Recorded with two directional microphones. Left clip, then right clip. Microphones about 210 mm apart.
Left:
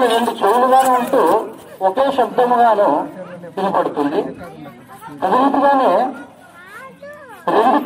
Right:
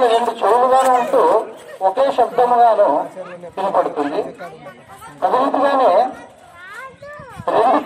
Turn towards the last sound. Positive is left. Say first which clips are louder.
# left 1 dB
turn(degrees=35)  # may be behind; listen again after turning